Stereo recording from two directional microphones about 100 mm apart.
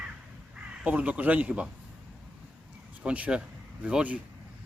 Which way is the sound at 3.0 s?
15° right (ahead or behind).